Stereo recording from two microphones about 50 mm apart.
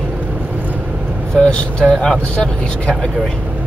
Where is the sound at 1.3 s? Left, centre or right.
Centre.